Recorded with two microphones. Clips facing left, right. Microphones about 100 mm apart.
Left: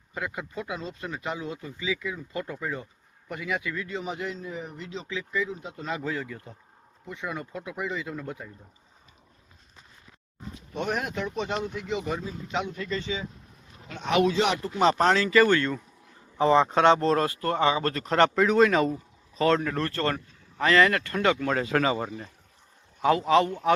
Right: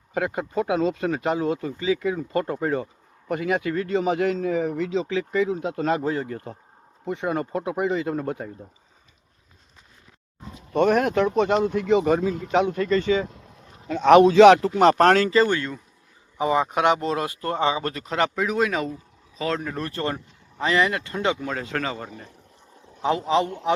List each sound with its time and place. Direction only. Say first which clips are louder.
0.3 s speech: right 11 dB; 55° right (ahead or behind)
1.7 s speech: right 8 dB; 45° right (ahead or behind); by 6.0 s 75° right (ahead or behind)
6.0 s speech: right 6 dB; 40° right (ahead or behind)
7.0 s speech: right 9 dB; 60° right (ahead or behind)
10.7 s speech: right 11 dB; 55° right (ahead or behind)
14.3 s speech: right 14 dB; 90° right
14.8 s speech: right 5 dB; 60° right (ahead or behind)
15.3 s speech: even; 25° right (ahead or behind)
15.5 s speech: left 2 dB; 5° right (ahead or behind)
17.2 s speech: even; 20° right (ahead or behind)
18.0 s speech: left 4 dB; 5° right (ahead or behind); by 21.4 s 20° right (ahead or behind)
21.4 s speech: left 3 dB; centre (ahead or behind)
23.0 s speech: left 1 dB; 20° right (ahead or behind)